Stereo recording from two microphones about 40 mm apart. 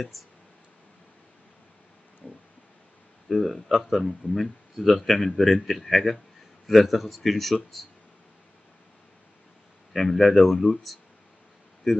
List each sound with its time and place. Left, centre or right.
0.2 s speech: centre
2.2 s a sound: left
3.3 s speech: centre
9.9 s speech: centre